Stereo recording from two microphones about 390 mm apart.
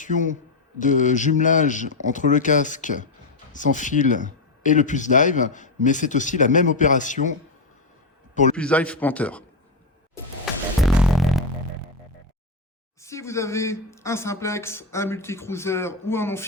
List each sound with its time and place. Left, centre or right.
0.0 s speech: centre
8.5 s a man's voice: centre
10.4 s music: centre
13.0 s speech: centre